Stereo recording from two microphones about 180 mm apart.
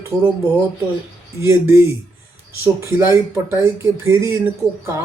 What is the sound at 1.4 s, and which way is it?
Speech, 15° right (ahead or behind).